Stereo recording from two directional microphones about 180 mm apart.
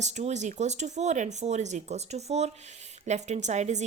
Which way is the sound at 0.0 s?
40° right (ahead or behind).